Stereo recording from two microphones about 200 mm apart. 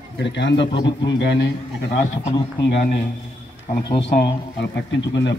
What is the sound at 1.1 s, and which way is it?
Speech, 60° left (ahead or behind).